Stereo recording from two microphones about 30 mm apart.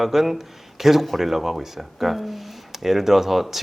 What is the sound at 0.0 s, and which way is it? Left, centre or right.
Speech, centre.